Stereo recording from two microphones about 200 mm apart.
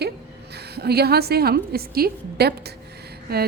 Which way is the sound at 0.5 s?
55° right (ahead or behind).